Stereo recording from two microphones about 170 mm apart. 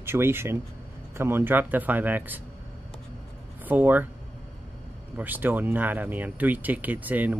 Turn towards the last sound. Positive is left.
turn(degrees=-10)  # may be behind; listen again after turning